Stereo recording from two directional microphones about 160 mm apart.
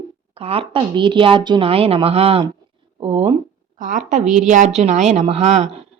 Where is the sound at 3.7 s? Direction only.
55° right (ahead or behind).